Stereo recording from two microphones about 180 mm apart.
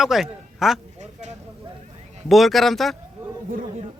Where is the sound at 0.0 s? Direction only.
Centre (ahead or behind).